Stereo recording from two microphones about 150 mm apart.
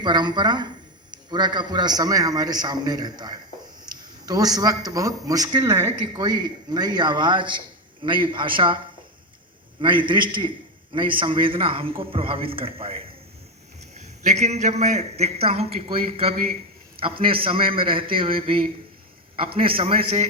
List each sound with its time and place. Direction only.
0.0 s speech: 30° right (ahead or behind)
3.9 s a sound: 25° right (ahead or behind)
4.3 s a man's voice: 25° right (ahead or behind)
9.8 s a man's voice: 35° right (ahead or behind)